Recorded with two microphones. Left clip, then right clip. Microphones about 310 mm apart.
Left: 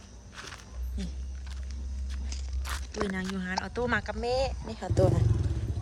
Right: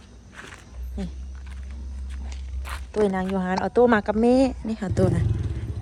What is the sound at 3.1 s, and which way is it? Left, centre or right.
Speech, centre.